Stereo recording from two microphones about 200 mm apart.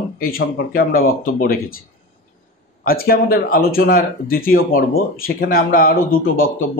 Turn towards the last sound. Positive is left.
turn(degrees=45)  # may be behind; listen again after turning